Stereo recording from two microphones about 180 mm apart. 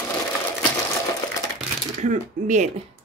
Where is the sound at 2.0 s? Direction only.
40° right (ahead or behind).